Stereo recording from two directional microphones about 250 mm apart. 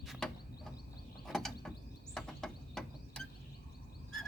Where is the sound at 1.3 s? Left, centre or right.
Centre.